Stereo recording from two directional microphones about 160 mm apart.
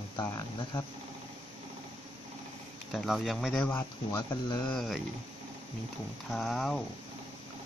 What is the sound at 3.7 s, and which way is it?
Speech, 15° left (ahead or behind).